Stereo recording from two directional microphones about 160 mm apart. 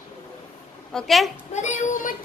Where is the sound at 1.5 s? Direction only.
50° left (ahead or behind).